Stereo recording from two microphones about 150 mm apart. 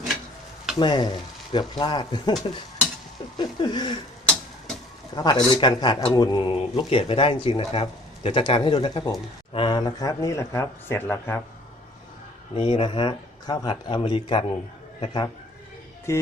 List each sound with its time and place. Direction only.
0.8 s speech: 30° left (ahead or behind)
3.3 s a sound: 30° left (ahead or behind)
5.1 s speech: 30° left (ahead or behind)
12.5 s speech: 35° left (ahead or behind)
16.1 s speech: 20° left (ahead or behind)